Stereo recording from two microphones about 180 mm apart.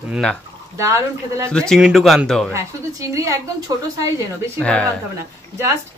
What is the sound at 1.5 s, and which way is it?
Speech, 5° left (ahead or behind).